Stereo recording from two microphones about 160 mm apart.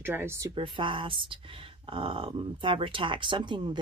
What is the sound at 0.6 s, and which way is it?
Speech, 30° right (ahead or behind).